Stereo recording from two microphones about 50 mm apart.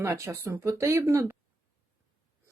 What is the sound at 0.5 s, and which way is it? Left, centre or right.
Speech, right.